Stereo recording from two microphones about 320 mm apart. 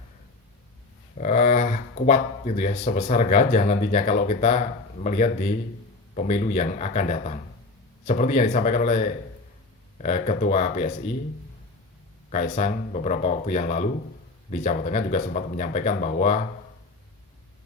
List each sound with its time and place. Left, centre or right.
1.2 s speech: left
12.3 s speech: left